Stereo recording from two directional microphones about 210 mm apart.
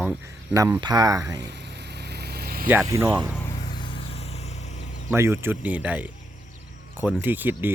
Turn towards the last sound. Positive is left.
turn(degrees=-10)  # may be behind; listen again after turning